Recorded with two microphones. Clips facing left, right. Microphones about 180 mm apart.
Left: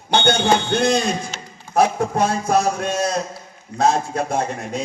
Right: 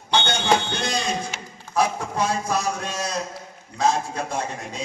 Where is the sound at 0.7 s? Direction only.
55° left (ahead or behind).